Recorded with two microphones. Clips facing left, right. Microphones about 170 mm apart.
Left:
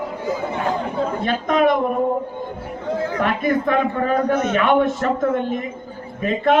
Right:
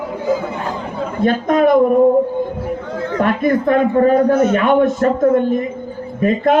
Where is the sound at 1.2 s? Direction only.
45° right (ahead or behind).